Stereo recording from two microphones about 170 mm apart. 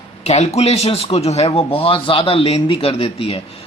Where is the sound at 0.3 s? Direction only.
40° left (ahead or behind).